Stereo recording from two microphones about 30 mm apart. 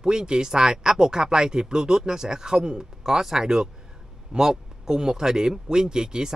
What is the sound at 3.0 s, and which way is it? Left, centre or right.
Speech, centre.